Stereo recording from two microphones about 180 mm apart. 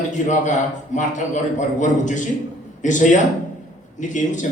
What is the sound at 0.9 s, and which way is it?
A man's voice, 45° left (ahead or behind).